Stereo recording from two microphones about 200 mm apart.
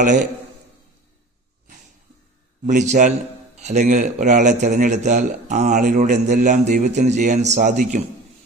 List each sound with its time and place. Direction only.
2.6 s a man's voice: 35° right (ahead or behind)